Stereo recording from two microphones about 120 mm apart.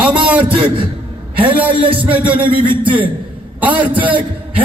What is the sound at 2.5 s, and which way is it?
Speech, 45° right (ahead or behind).